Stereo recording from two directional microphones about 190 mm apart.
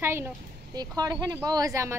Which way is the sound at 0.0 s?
10° right (ahead or behind).